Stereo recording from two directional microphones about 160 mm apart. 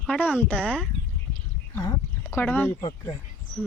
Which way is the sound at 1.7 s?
20° left (ahead or behind).